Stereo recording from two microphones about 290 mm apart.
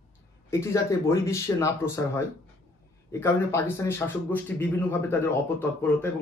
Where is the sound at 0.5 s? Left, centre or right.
Centre.